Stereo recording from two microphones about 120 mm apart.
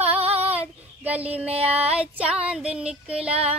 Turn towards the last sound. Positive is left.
turn(degrees=-10)  # may be behind; listen again after turning